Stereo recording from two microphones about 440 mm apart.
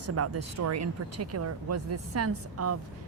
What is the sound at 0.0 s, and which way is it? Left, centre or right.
A woman's voice, right.